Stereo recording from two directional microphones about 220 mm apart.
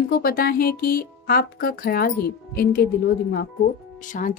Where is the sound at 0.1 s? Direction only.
45° left (ahead or behind).